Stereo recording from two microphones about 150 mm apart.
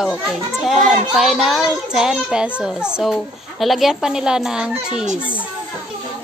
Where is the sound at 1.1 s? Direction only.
Centre (ahead or behind).